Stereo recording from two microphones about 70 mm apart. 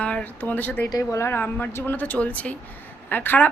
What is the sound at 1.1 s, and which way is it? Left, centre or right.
Speech, left.